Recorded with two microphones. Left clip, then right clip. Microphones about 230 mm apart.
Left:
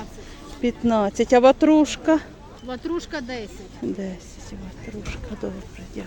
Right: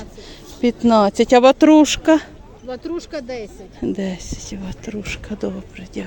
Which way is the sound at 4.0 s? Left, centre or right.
Right.